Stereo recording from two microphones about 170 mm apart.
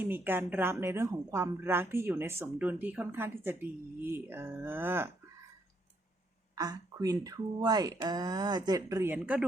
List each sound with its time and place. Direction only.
0.0 s a woman's voice: 10° right (ahead or behind)
6.6 s speech: 20° right (ahead or behind)